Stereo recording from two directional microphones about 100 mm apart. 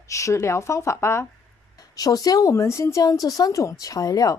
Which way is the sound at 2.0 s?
40° left (ahead or behind).